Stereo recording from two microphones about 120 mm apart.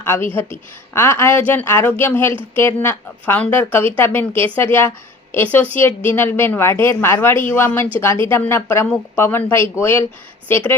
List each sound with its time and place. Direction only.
0.0 s a woman's voice: 20° left (ahead or behind)